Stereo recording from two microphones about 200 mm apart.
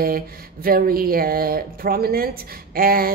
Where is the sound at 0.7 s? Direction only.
45° right (ahead or behind).